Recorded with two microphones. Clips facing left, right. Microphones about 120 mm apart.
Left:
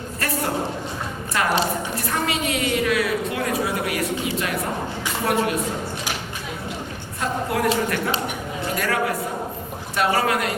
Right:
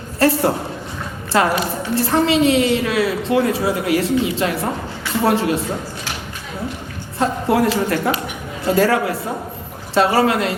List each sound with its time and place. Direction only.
0.2 s a woman's voice: 30° right (ahead or behind)
7.2 s a woman's voice: 30° right (ahead or behind)